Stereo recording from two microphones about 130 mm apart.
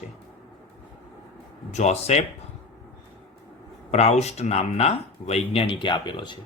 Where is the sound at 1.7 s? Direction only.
60° left (ahead or behind).